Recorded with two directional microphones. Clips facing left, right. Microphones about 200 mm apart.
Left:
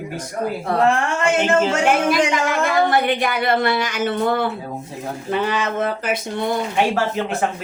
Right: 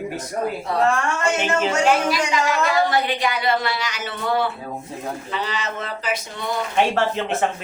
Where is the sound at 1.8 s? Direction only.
55° left (ahead or behind).